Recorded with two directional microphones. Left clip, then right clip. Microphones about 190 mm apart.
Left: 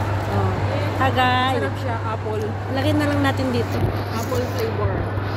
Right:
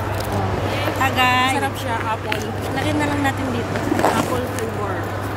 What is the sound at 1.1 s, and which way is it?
Speech, 30° left (ahead or behind).